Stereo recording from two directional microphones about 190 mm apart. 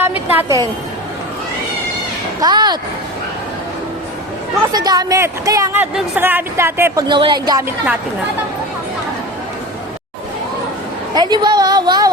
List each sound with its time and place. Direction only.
0.0 s a woman's voice: 10° right (ahead or behind)
2.4 s speech: 20° right (ahead or behind)
4.7 s speech: 20° right (ahead or behind)
7.1 s speech: 25° right (ahead or behind)
11.1 s speech: 20° right (ahead or behind)